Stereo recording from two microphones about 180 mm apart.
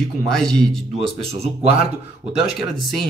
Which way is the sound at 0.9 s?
35° right (ahead or behind).